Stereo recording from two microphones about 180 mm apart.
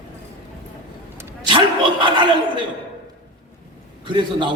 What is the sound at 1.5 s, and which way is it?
A man's voice, 25° right (ahead or behind).